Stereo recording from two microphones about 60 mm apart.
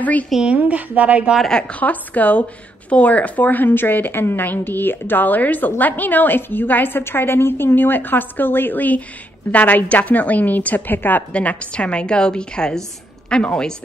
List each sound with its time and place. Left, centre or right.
0.0 s a woman's voice: left
0.6 s a woman's voice: right
1.4 s a woman's voice: centre
1.8 s a woman's voice: left
11.3 s a woman's voice: left